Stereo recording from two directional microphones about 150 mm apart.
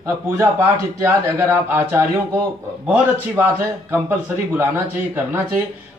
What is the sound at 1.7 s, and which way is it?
Speech, 15° right (ahead or behind).